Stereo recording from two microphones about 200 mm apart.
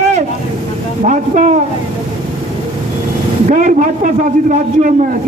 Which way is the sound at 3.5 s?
35° right (ahead or behind).